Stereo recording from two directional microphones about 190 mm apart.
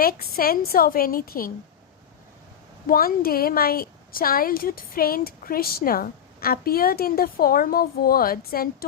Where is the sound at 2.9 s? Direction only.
50° left (ahead or behind).